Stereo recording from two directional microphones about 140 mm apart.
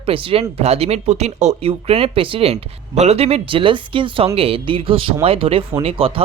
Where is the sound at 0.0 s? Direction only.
40° right (ahead or behind).